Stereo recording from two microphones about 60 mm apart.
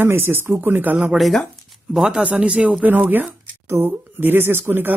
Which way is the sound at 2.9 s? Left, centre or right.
Right.